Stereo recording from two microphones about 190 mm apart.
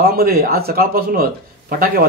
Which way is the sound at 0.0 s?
50° right (ahead or behind).